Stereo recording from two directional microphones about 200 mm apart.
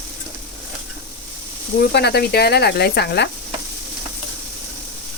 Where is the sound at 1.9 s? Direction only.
55° left (ahead or behind).